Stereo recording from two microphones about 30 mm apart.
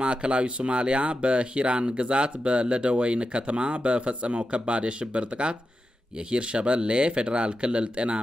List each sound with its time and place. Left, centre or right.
0.0 s speech: right